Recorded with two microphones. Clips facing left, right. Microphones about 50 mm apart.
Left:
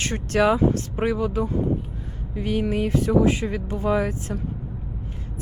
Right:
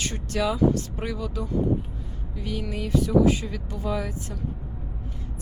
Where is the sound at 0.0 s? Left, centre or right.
Left.